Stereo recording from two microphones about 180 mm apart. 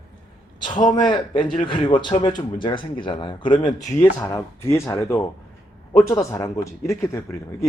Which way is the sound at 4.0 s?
15° left (ahead or behind).